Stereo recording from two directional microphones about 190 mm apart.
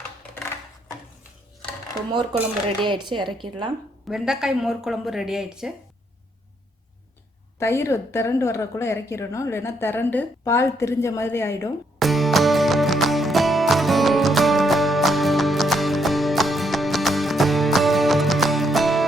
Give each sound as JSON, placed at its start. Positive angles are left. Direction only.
{"t": 2.8, "sound": "speech", "side_deg": -25}
{"t": 4.1, "sound": "a woman's voice", "side_deg": 0}
{"t": 7.6, "sound": "a woman's voice", "side_deg": 15}
{"t": 11.9, "sound": "music", "side_deg": 0}